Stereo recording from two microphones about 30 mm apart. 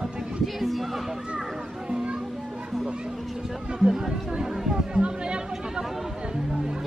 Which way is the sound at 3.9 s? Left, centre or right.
Centre.